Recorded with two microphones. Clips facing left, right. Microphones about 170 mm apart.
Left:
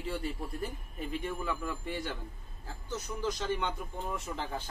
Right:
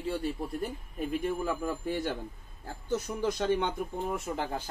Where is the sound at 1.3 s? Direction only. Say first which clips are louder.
Right 5 dB; 35° right (ahead or behind).